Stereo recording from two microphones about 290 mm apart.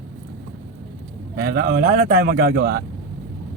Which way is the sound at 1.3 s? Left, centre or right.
Right.